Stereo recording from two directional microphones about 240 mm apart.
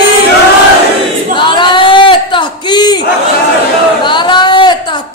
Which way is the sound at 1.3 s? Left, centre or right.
Centre.